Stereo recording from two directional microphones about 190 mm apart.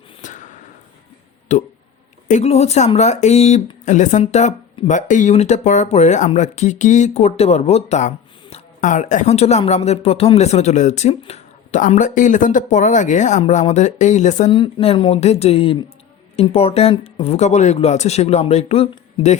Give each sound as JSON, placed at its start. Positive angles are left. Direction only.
{"t": 0.2, "sound": "a sound", "side_deg": 40}
{"t": 1.5, "sound": "speech", "side_deg": 40}
{"t": 14.5, "sound": "speech", "side_deg": 30}